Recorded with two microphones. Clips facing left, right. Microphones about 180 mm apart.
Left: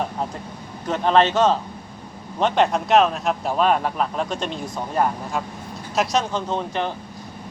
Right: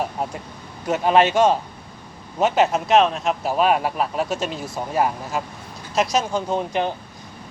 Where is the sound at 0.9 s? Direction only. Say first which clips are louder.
Right 1 dB; 10° right (ahead or behind).